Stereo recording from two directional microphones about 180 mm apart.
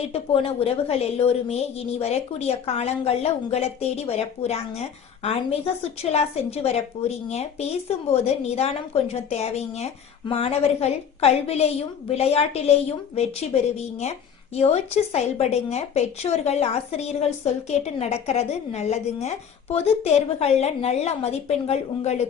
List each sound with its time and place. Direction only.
0.1 s a woman's voice: 35° left (ahead or behind)